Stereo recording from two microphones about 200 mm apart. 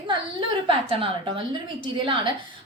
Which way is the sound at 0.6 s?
25° right (ahead or behind).